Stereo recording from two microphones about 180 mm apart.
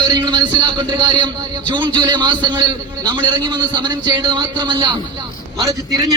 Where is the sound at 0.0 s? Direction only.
25° right (ahead or behind).